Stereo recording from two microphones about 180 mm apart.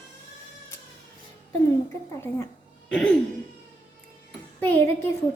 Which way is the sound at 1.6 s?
15° left (ahead or behind).